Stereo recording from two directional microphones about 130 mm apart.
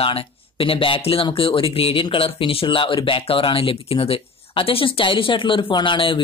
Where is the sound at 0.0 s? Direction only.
45° left (ahead or behind).